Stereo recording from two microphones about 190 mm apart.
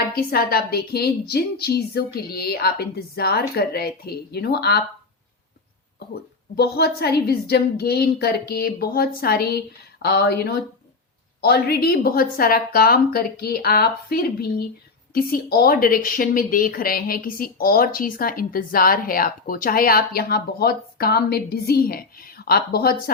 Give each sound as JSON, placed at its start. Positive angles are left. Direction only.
{"t": 0.1, "sound": "a woman's voice", "side_deg": 55}
{"t": 6.6, "sound": "a woman's voice", "side_deg": 60}